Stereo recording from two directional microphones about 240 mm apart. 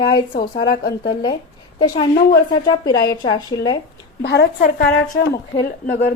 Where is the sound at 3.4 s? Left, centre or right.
Centre.